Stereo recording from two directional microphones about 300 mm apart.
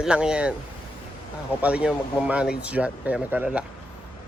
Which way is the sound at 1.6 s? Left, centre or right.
Centre.